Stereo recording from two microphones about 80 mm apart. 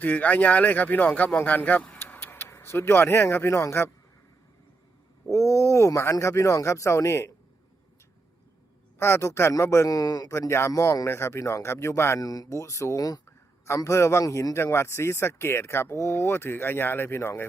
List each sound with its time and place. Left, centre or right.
0.0 s speech: centre
5.3 s speech: left
9.0 s speech: left
10.3 s speech: left
12.2 s speech: left
13.7 s speech: left